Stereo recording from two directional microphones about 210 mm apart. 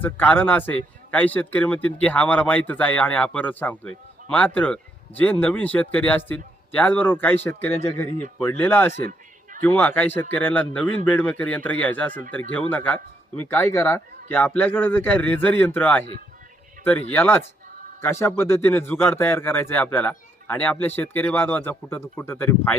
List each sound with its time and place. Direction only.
0.0 s a man's voice: 10° left (ahead or behind)